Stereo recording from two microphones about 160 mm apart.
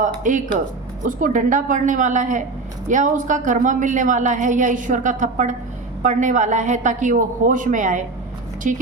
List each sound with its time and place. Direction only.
0.0 s a woman's voice: 55° right (ahead or behind)